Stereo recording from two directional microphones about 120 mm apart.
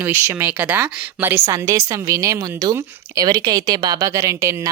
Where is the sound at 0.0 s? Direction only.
20° right (ahead or behind).